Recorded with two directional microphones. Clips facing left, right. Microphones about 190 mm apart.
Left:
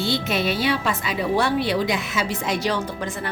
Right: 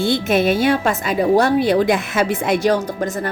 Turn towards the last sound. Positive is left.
turn(degrees=-45)  # may be behind; listen again after turning